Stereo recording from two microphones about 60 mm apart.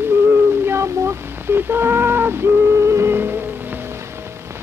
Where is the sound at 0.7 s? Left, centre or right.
Right.